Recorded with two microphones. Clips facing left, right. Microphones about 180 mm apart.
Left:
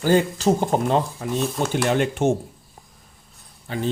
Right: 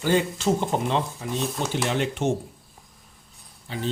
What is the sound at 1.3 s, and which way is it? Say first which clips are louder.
Speech: left 4 dB; centre (ahead or behind).